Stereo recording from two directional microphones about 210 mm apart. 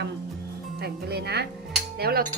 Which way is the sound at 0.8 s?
50° right (ahead or behind).